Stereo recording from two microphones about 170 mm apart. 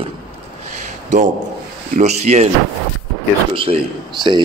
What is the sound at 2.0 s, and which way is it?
Speech, 40° right (ahead or behind).